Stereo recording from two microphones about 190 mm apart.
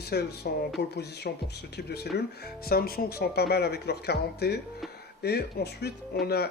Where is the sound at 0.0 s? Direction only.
60° left (ahead or behind).